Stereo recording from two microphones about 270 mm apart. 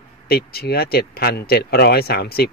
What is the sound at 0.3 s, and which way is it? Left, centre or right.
Speech, left.